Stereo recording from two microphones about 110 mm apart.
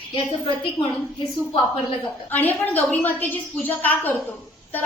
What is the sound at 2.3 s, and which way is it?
A woman's voice, 15° left (ahead or behind).